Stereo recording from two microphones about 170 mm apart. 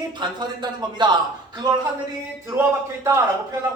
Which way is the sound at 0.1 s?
25° right (ahead or behind).